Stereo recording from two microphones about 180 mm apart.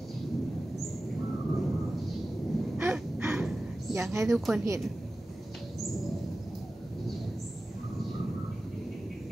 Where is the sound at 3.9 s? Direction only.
15° right (ahead or behind).